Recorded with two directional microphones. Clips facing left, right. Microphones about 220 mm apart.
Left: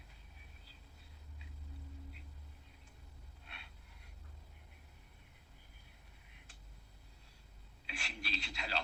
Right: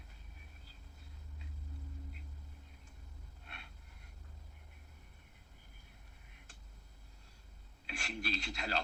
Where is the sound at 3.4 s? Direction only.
50° right (ahead or behind).